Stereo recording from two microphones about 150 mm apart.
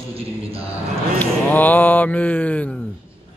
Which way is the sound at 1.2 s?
10° left (ahead or behind).